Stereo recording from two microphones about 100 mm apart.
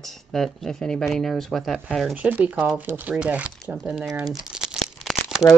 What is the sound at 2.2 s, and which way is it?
Speech, 15° right (ahead or behind).